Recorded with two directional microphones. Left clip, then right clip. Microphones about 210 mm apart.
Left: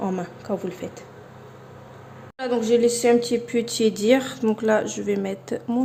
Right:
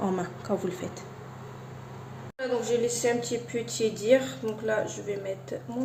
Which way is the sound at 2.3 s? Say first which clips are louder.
Left 7 dB; 55° left (ahead or behind).